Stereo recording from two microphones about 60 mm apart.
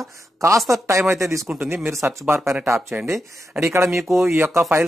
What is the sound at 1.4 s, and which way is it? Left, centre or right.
Speech, centre.